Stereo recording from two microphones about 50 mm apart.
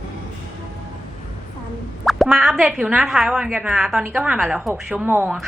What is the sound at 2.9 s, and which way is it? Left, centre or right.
A woman's voice, centre.